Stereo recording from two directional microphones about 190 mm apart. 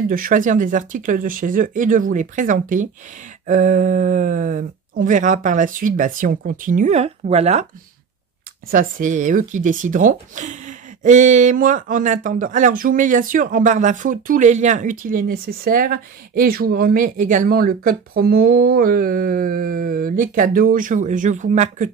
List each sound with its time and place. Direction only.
0.1 s speech: 45° right (ahead or behind)
8.6 s speech: 45° right (ahead or behind)